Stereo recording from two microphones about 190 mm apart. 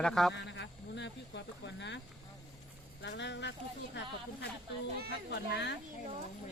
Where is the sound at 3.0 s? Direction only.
70° left (ahead or behind).